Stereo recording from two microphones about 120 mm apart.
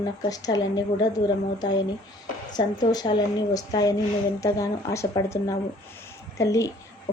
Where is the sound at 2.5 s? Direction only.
35° left (ahead or behind).